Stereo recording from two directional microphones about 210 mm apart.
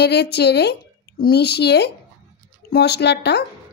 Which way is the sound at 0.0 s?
50° left (ahead or behind).